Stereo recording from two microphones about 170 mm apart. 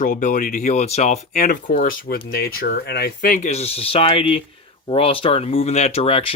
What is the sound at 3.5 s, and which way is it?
Speech, 40° left (ahead or behind).